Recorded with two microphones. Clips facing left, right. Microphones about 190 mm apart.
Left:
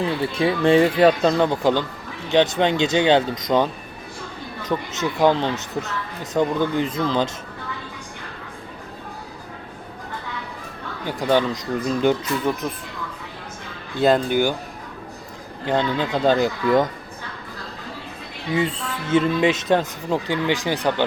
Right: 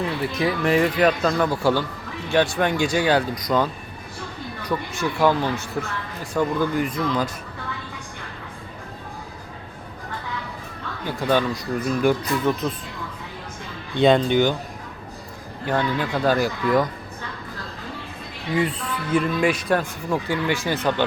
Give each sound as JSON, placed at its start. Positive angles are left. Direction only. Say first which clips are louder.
{"t": 0.0, "sound": "speech", "louder": "left 2 dB", "side_deg": 30}
{"t": 11.0, "sound": "speech", "louder": "left 2 dB", "side_deg": 15}
{"t": 13.9, "sound": "speech", "louder": "right 1 dB", "side_deg": 5}
{"t": 15.6, "sound": "speech", "louder": "left 2 dB", "side_deg": 20}
{"t": 18.5, "sound": "speech", "louder": "even", "side_deg": 25}